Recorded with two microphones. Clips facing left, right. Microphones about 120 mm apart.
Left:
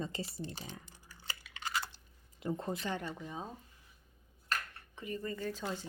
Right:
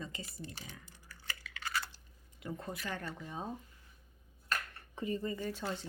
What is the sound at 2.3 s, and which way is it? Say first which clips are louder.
Speech: left 5 dB; 30° left (ahead or behind).